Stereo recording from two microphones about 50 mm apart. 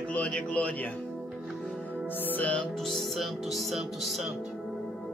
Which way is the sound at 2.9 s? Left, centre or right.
Centre.